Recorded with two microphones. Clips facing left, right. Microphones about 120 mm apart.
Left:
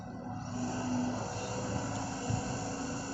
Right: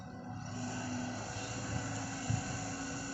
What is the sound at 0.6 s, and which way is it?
Vehicle, 30° left (ahead or behind).